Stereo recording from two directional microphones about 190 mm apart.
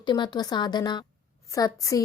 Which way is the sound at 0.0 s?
25° left (ahead or behind).